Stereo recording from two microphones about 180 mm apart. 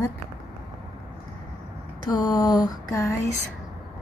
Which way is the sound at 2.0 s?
25° left (ahead or behind).